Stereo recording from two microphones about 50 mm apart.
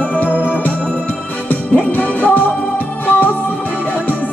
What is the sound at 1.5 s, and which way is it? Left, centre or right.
Music, left.